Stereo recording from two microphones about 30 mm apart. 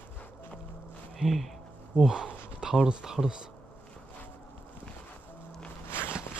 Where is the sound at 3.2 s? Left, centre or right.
Left.